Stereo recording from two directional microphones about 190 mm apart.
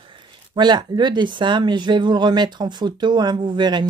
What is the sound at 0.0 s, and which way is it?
Speech, 25° right (ahead or behind).